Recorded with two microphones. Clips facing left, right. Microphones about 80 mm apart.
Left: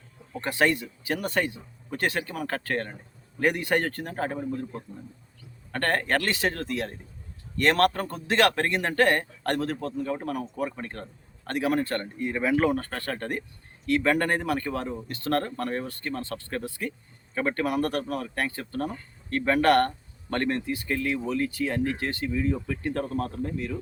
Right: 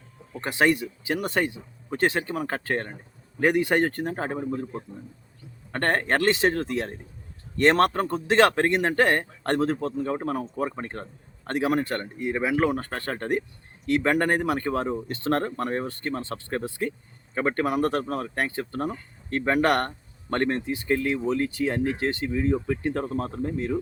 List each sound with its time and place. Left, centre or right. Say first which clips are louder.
0.4 s speech: right 2 dB; centre
5.7 s speech: right 2 dB; right